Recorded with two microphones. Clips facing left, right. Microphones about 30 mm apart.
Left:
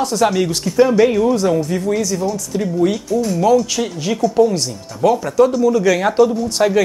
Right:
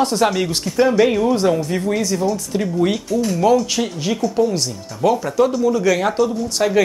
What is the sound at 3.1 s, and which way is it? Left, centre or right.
Speech, right.